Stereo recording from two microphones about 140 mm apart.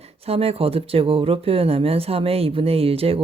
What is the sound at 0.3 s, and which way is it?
Speech, 45° right (ahead or behind).